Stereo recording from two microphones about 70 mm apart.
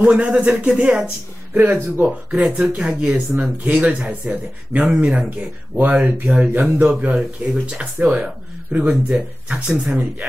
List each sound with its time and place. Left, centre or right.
0.0 s speech: centre